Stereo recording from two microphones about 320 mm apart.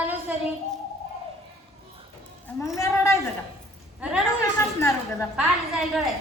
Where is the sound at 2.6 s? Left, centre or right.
Centre.